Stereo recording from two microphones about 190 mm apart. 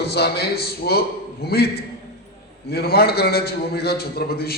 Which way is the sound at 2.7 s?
55° left (ahead or behind).